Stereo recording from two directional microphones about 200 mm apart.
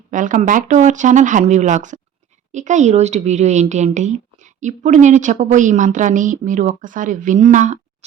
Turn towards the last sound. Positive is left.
turn(degrees=-35)  # may be behind; listen again after turning